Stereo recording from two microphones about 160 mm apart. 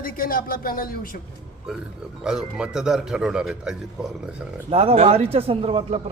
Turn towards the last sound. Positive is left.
turn(degrees=-35)  # may be behind; listen again after turning